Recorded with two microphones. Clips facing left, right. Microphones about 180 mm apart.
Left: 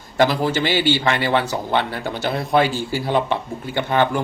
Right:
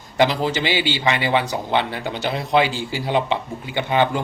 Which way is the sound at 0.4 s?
15° right (ahead or behind).